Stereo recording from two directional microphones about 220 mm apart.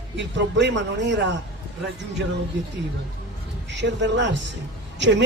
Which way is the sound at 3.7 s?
55° right (ahead or behind).